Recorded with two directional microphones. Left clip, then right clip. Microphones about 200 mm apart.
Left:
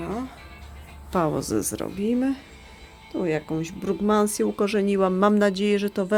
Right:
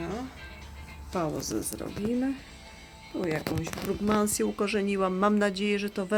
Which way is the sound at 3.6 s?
25° left (ahead or behind).